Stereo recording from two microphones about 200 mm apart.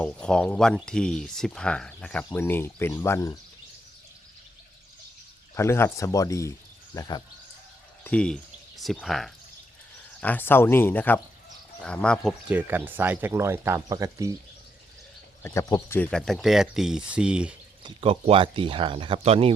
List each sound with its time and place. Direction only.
0.0 s speech: 5° left (ahead or behind)
5.5 s speech: 15° left (ahead or behind)
12.5 s speech: 10° right (ahead or behind)
15.4 s speech: 15° left (ahead or behind); by 17.5 s 5° right (ahead or behind)
17.8 s speech: 30° right (ahead or behind)